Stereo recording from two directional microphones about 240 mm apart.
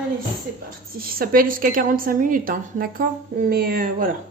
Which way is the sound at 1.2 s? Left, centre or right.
Right.